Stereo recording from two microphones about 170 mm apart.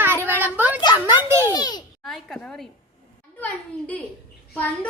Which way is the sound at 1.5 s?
25° left (ahead or behind).